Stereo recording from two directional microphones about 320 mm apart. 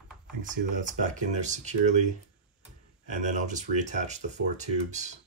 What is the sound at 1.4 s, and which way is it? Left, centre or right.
Speech, right.